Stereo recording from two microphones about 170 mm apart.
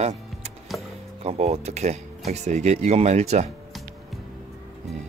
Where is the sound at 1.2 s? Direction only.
40° right (ahead or behind).